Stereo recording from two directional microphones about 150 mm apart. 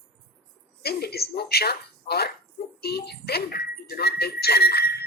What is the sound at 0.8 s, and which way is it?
Speech, 90° left.